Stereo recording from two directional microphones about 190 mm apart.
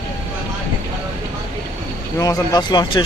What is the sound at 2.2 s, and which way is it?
Speech, 20° left (ahead or behind).